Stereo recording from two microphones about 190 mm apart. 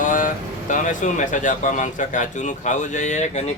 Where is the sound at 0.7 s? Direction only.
40° left (ahead or behind).